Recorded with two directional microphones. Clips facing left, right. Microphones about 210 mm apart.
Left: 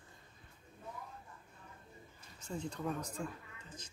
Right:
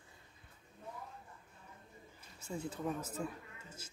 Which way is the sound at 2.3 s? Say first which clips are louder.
Even; 10° right (ahead or behind).